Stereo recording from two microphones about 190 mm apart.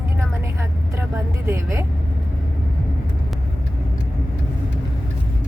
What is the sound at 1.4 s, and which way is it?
Speech, 15° right (ahead or behind).